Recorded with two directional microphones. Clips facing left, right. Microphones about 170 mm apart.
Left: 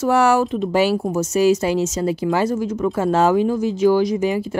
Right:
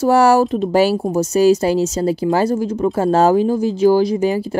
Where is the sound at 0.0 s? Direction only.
35° right (ahead or behind).